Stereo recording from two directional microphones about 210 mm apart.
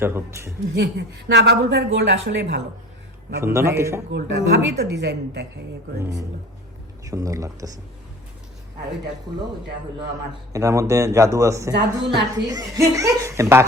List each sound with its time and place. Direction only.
0.0 s speech: 10° right (ahead or behind)
0.7 s a woman's voice: 55° right (ahead or behind)
3.4 s speech: 10° right (ahead or behind)
4.1 s a woman's voice: 50° right (ahead or behind)
7.0 s speech: 15° right (ahead or behind)
10.5 s speech: 15° right (ahead or behind)
11.7 s a woman's voice: 55° right (ahead or behind)
12.5 s speech: 15° right (ahead or behind)